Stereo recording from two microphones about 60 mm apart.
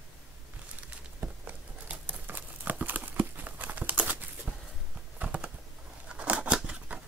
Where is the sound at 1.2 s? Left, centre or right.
Right.